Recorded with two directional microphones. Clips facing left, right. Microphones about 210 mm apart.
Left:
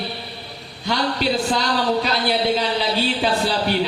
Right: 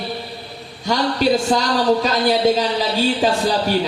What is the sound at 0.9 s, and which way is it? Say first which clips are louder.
Speech: right 4 dB; 45° right (ahead or behind).